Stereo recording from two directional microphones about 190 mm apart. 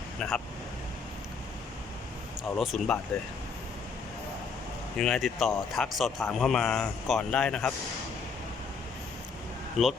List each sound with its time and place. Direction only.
0.2 s speech: centre (ahead or behind)
2.6 s speech: centre (ahead or behind)
4.9 s speech: centre (ahead or behind)
9.8 s speech: centre (ahead or behind)